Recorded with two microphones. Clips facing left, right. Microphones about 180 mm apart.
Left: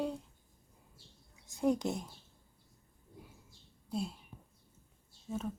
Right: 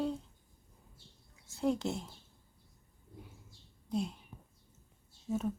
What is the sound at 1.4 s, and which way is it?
Speech, 15° left (ahead or behind).